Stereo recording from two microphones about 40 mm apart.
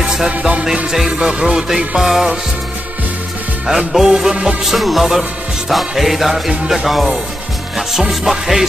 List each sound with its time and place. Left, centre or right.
0.3 s music: right
1.2 s music: centre
3.6 s music: centre
4.6 s music: centre